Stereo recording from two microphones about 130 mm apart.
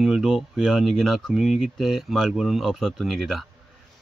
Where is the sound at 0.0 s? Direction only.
Centre (ahead or behind).